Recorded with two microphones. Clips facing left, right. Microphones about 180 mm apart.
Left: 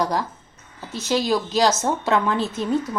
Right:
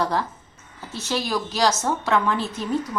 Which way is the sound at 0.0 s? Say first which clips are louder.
Left 1 dB; 15° left (ahead or behind).